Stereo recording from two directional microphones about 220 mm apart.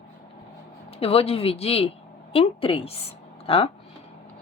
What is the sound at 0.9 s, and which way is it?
Speech, 25° left (ahead or behind).